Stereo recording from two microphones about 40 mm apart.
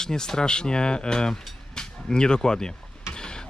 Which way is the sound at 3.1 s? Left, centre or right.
Centre.